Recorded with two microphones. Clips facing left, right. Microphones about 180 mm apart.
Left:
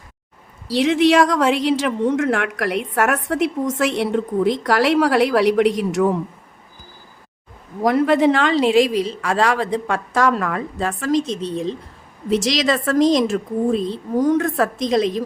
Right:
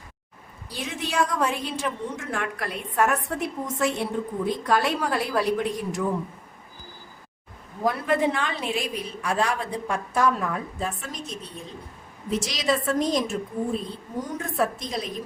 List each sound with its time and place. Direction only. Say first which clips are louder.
0.7 s a woman's voice: left 16 dB; 85° left
7.8 s a woman's voice: left 8 dB; 85° left